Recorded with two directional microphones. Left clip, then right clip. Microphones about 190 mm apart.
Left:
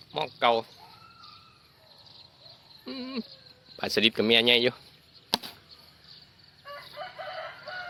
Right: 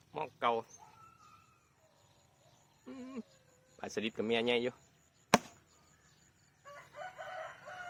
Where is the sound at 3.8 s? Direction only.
50° left (ahead or behind).